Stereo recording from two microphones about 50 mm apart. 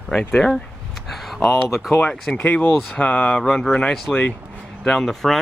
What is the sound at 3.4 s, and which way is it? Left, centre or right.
Speech, centre.